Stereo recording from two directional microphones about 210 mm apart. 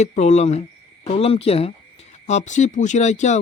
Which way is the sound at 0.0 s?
30° left (ahead or behind).